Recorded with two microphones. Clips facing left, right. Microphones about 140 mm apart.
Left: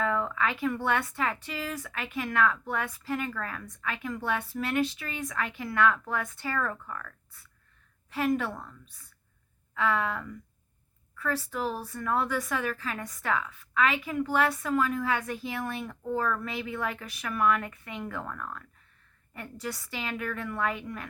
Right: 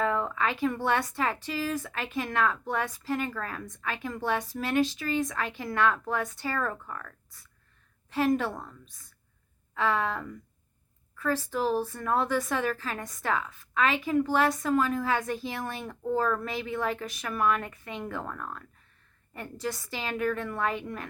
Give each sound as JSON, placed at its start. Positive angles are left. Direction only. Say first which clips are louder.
{"t": 0.0, "sound": "a woman's voice", "louder": "right 1 dB", "side_deg": -30}
{"t": 8.5, "sound": "a woman's voice", "louder": "right 2 dB", "side_deg": -20}
{"t": 9.7, "sound": "a woman's voice", "louder": "right 1 dB", "side_deg": -35}